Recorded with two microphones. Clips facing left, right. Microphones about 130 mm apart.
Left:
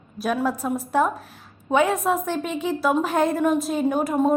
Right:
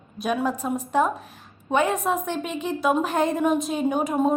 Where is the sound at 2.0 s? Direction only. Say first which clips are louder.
Left 2 dB; 10° right (ahead or behind).